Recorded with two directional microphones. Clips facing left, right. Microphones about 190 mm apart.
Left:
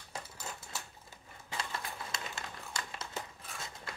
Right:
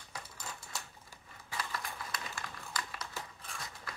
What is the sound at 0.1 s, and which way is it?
Typewriter, 25° left (ahead or behind).